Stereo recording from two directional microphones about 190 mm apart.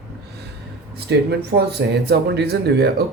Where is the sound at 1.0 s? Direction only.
60° right (ahead or behind).